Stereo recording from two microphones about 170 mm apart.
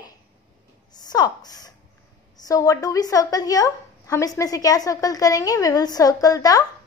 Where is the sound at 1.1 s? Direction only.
25° left (ahead or behind).